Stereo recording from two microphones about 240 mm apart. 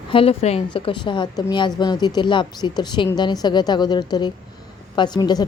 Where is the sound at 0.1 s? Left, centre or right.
Left.